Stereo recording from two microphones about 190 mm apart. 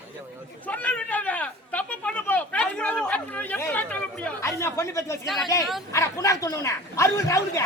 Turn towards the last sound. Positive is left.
turn(degrees=15)  # may be behind; listen again after turning